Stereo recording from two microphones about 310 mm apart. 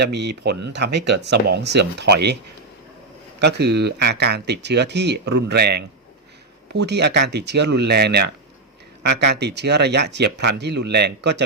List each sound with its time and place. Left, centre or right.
0.0 s speech: right
3.4 s speech: right